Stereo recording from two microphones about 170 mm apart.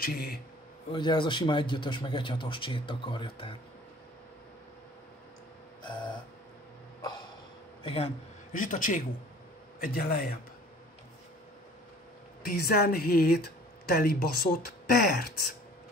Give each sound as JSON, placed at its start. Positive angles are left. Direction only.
{"t": 0.0, "sound": "speech", "side_deg": 65}
{"t": 0.9, "sound": "a man's voice", "side_deg": 30}
{"t": 7.0, "sound": "a sound", "side_deg": 25}
{"t": 7.8, "sound": "a man's voice", "side_deg": 35}
{"t": 8.5, "sound": "speech", "side_deg": 50}
{"t": 12.4, "sound": "speech", "side_deg": 60}